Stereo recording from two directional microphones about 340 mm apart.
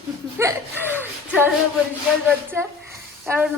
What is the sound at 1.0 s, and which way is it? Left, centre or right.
Music, centre.